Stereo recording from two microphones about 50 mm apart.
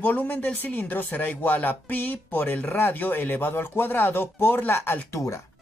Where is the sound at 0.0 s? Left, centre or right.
Left.